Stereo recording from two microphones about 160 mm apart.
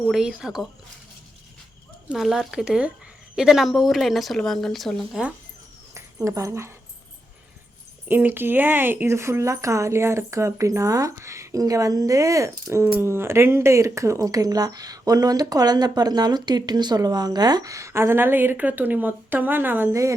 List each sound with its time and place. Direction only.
0.1 s speech: 5° right (ahead or behind)
2.0 s speech: centre (ahead or behind)
6.2 s speech: 20° right (ahead or behind)
8.0 s speech: 15° right (ahead or behind)